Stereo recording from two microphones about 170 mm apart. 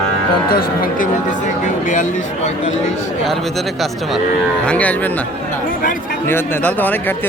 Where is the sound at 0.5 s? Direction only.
60° left (ahead or behind).